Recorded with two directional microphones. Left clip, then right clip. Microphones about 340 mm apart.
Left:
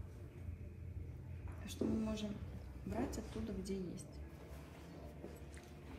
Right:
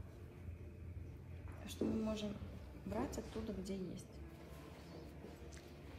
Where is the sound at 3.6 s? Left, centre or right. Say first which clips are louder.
Left 2 dB; centre.